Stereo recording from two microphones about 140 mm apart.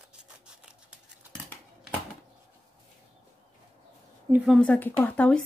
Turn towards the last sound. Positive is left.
turn(degrees=10)  # may be behind; listen again after turning